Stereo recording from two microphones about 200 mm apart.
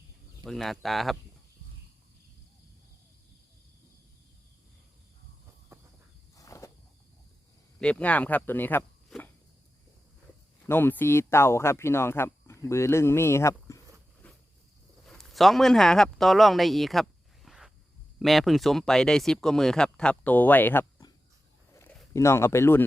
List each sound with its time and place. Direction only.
0.4 s speech: centre (ahead or behind)
6.3 s walk: 15° left (ahead or behind)
7.8 s speech: 5° left (ahead or behind)
10.7 s speech: 10° left (ahead or behind)